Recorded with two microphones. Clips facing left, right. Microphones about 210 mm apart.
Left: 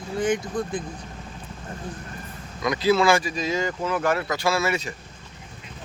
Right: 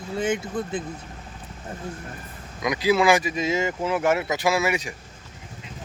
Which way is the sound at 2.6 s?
15° right (ahead or behind).